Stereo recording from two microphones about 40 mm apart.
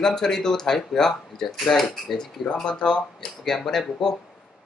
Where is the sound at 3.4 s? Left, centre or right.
Centre.